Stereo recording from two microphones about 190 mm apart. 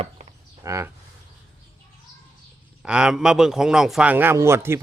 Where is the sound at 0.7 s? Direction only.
15° right (ahead or behind).